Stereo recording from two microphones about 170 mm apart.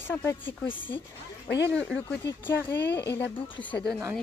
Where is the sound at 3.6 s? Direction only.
5° left (ahead or behind).